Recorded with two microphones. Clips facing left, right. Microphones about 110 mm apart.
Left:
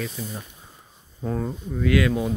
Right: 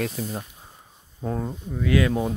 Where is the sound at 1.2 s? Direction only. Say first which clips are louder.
Left 1 dB; 20° right (ahead or behind).